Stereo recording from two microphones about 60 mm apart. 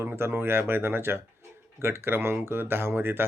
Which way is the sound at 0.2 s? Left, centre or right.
Right.